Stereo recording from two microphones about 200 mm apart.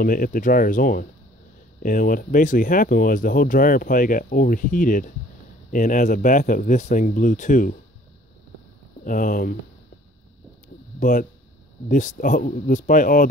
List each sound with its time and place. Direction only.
0.0 s speech: 45° left (ahead or behind)
9.0 s speech: 40° left (ahead or behind)
11.0 s speech: 40° left (ahead or behind)